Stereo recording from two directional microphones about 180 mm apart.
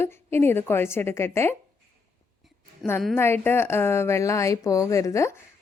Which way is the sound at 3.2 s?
10° left (ahead or behind).